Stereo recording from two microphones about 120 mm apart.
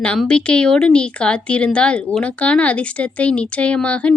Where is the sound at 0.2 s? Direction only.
10° left (ahead or behind).